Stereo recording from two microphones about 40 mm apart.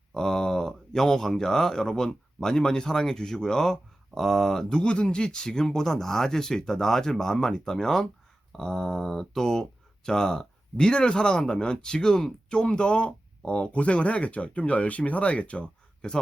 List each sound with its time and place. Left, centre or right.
0.1 s speech: centre
4.7 s speech: left